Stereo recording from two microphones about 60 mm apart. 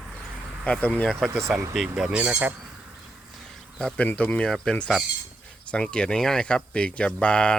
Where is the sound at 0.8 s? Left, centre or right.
Left.